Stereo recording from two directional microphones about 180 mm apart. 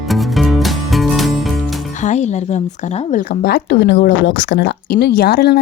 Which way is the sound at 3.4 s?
70° left (ahead or behind).